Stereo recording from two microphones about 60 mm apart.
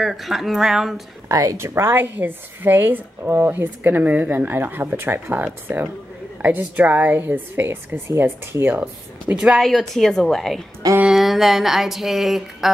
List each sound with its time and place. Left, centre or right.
0.0 s speech: centre
1.3 s speech: right
1.6 s a woman's voice: right
9.3 s a woman's voice: centre
9.6 s speech: centre